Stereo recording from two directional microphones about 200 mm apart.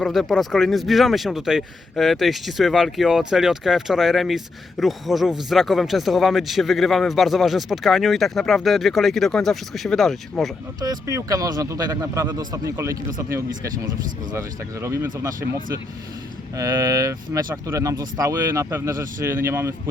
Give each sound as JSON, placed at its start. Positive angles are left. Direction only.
{"t": 0.0, "sound": "speech", "side_deg": 0}
{"t": 10.8, "sound": "speech", "side_deg": -15}
{"t": 16.6, "sound": "speech", "side_deg": -15}